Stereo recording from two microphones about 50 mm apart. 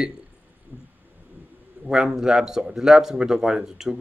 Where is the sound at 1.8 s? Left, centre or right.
Centre.